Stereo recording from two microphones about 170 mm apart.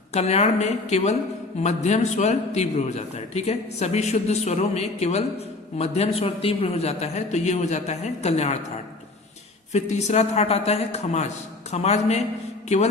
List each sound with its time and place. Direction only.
0.1 s a man's voice: 40° left (ahead or behind)
9.7 s a man's voice: 45° left (ahead or behind)